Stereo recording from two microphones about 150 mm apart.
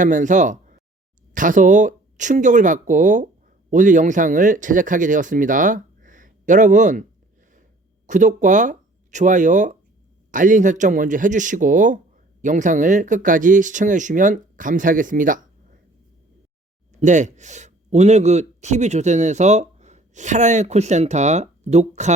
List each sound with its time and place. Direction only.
0.0 s speech: 60° right (ahead or behind)
8.0 s speech: 55° right (ahead or behind)
17.0 s speech: 55° right (ahead or behind)